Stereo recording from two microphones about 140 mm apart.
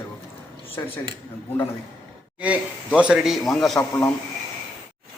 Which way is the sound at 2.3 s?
10° right (ahead or behind).